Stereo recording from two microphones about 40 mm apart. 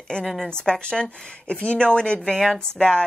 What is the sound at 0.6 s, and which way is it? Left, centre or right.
Speech, left.